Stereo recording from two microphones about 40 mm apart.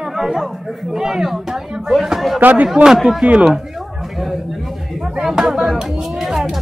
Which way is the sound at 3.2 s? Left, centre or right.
Right.